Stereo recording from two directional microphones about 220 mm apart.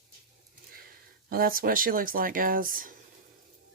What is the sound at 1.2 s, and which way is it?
Speech, 40° right (ahead or behind).